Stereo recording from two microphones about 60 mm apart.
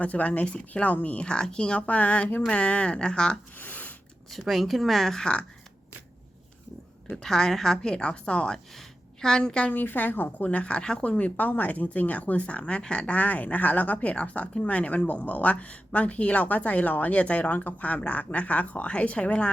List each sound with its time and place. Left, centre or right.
0.0 s speech: left
3.6 s a sound: left
4.3 s speech: centre
7.2 s a woman's voice: centre
9.7 s speech: left